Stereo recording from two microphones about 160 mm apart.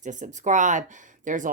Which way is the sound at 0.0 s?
50° right (ahead or behind).